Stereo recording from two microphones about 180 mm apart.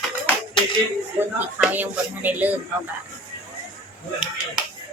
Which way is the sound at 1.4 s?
10° right (ahead or behind).